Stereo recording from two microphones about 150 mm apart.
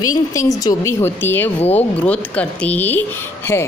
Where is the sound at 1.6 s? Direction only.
45° left (ahead or behind).